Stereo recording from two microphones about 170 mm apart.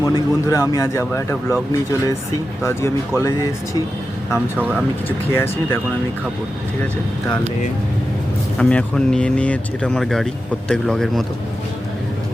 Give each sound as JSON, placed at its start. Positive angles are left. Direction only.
{"t": 0.0, "sound": "speech", "side_deg": 20}
{"t": 4.5, "sound": "speech", "side_deg": -10}
{"t": 5.0, "sound": "speech", "side_deg": 15}
{"t": 8.5, "sound": "speech", "side_deg": 5}